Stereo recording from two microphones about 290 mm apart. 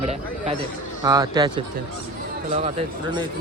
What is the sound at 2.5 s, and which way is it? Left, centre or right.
Speech, centre.